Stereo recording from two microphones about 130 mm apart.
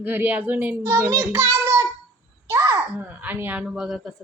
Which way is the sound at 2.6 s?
25° right (ahead or behind).